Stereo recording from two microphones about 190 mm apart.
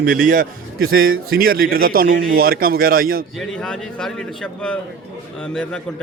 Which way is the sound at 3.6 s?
5° left (ahead or behind).